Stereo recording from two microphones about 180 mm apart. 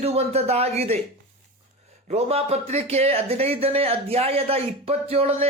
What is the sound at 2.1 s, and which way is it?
Speech, 35° right (ahead or behind).